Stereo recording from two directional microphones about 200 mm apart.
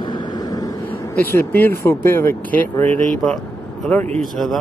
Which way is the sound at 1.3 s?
10° left (ahead or behind).